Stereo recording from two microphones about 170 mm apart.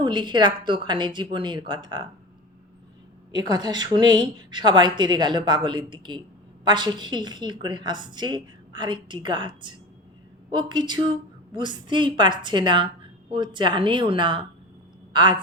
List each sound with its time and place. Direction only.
0.0 s a woman's voice: 25° right (ahead or behind)
3.3 s a woman's voice: 25° right (ahead or behind)